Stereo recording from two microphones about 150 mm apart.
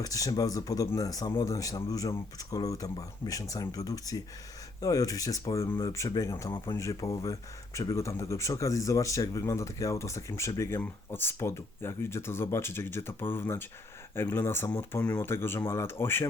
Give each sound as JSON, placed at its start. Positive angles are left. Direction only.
{"t": 0.0, "sound": "speech", "side_deg": 25}